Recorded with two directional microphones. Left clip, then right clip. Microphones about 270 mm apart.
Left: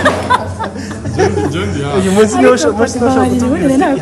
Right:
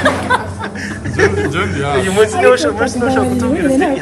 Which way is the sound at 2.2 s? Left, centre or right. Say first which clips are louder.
Left 1 dB; left.